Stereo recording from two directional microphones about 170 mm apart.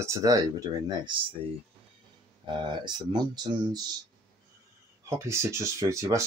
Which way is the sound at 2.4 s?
25° right (ahead or behind).